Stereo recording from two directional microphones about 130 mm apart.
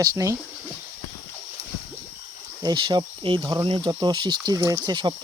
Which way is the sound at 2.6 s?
30° right (ahead or behind).